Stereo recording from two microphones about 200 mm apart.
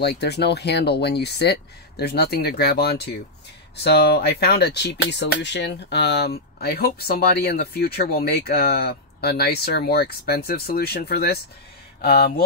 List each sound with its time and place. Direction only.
0.0 s speech: 55° left (ahead or behind)